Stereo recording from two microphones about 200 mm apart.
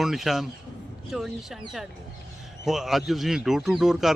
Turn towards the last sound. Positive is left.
turn(degrees=0)  # may be behind; listen again after turning